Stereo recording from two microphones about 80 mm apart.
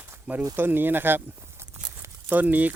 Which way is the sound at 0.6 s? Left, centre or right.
Right.